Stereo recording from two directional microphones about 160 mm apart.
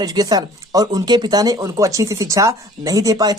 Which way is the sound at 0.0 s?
25° right (ahead or behind).